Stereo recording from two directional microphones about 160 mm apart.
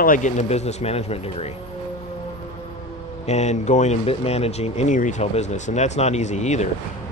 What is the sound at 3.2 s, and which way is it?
Speech, 45° left (ahead or behind).